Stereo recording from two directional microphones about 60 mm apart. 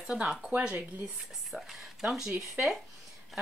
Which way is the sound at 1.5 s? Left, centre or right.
Centre.